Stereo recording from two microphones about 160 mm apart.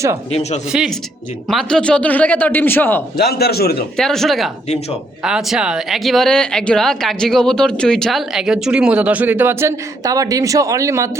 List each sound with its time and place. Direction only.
0.3 s speech: 40° left (ahead or behind)
0.7 s a man's voice: 5° right (ahead or behind); by 3.0 s 15° left (ahead or behind)
3.2 s a man's voice: 90° left
3.9 s speech: centre (ahead or behind); by 11.1 s 20° right (ahead or behind)